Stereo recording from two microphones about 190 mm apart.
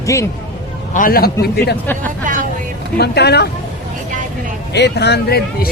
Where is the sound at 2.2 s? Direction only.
45° right (ahead or behind).